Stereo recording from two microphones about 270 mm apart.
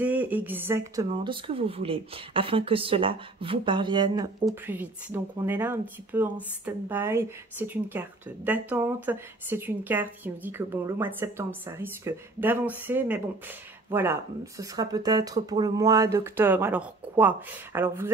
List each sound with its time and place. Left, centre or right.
0.0 s speech: centre